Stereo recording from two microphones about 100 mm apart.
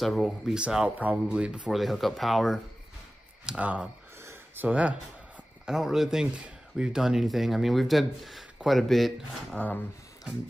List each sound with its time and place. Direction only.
0.0 s speech: centre (ahead or behind)
3.4 s speech: 15° right (ahead or behind)
4.2 s a sound: 25° right (ahead or behind)
4.6 s speech: 15° right (ahead or behind)
5.7 s speech: 5° right (ahead or behind)
9.6 s speech: 15° left (ahead or behind)